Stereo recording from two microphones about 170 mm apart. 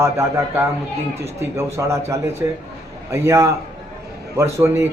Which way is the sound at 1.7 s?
15° right (ahead or behind).